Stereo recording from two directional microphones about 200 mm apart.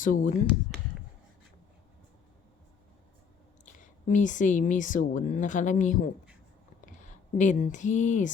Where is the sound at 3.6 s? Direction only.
40° left (ahead or behind).